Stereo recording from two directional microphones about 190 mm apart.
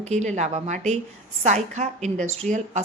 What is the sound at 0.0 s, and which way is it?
Speech, 35° right (ahead or behind).